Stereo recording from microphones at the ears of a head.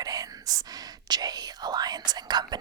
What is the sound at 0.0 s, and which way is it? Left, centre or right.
Whispering, right.